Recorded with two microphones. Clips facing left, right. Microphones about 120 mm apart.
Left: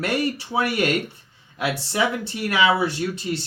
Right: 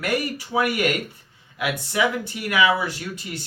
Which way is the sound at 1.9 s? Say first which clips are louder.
Right 2 dB; 30° left (ahead or behind).